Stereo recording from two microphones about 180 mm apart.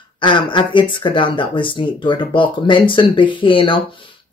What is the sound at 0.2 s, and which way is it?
Speech, 25° left (ahead or behind).